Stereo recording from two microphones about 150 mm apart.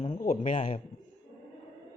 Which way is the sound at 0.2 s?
65° left (ahead or behind).